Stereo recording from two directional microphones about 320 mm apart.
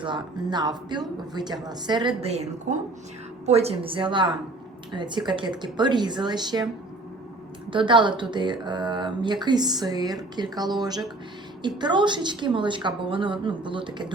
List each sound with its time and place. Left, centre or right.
0.0 s a woman's voice: centre
7.7 s speech: centre